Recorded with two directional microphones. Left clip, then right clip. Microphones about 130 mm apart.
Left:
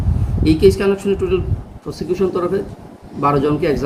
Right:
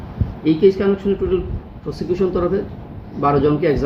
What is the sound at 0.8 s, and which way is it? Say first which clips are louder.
Speech: left 1 dB; 15° left (ahead or behind).